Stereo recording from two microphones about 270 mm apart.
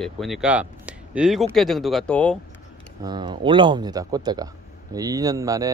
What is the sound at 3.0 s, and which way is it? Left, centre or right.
Speech, centre.